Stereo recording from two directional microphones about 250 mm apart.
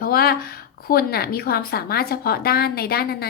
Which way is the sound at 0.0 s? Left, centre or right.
Left.